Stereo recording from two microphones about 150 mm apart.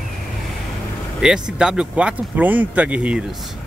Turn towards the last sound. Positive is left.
turn(degrees=-10)  # may be behind; listen again after turning